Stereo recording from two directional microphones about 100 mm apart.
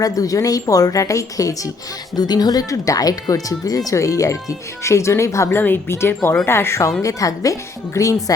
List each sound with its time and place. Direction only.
0.0 s speech: 35° left (ahead or behind)